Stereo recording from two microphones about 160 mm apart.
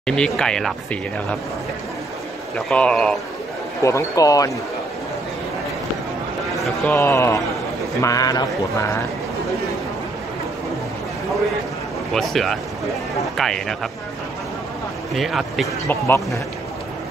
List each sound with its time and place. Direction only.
0.0 s speech: 5° left (ahead or behind)
2.7 s speech: 5° left (ahead or behind)
3.8 s speech: 20° left (ahead or behind)
6.5 s a sound: centre (ahead or behind)
6.9 s speech: 15° left (ahead or behind)
12.1 s speech: centre (ahead or behind)
15.1 s speech: centre (ahead or behind)
15.9 s speech: 15° left (ahead or behind)